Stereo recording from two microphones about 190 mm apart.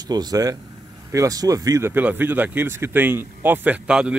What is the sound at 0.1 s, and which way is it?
A man's voice, 20° right (ahead or behind).